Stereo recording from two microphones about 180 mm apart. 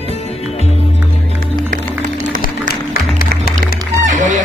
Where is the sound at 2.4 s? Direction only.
60° left (ahead or behind).